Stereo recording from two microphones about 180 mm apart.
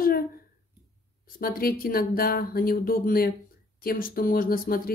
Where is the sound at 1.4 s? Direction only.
55° left (ahead or behind).